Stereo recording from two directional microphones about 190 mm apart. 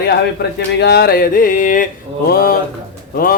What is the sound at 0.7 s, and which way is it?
Speech, 60° left (ahead or behind).